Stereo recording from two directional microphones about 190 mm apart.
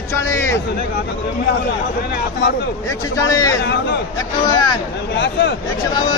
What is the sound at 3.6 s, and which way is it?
Speech, 60° left (ahead or behind).